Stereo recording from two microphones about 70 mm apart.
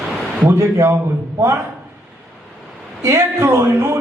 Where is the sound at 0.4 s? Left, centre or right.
Right.